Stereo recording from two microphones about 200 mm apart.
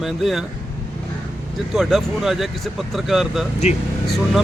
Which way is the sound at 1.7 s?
Centre (ahead or behind).